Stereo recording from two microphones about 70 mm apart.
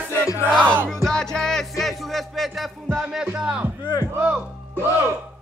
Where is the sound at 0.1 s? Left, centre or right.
Left.